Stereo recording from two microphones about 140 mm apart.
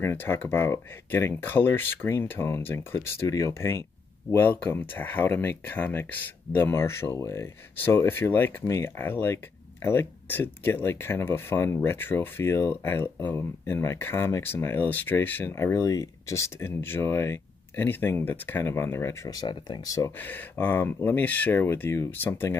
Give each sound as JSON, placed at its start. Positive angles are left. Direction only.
{"t": 0.0, "sound": "speech", "side_deg": 15}
{"t": 20.2, "sound": "speech", "side_deg": 15}